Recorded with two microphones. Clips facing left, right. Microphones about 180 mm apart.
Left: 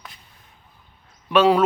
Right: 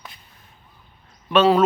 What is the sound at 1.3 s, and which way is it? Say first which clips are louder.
Speech: even; 10° left (ahead or behind).